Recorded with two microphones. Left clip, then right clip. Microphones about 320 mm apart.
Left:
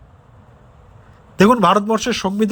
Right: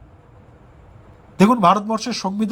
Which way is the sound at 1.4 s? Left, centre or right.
Centre.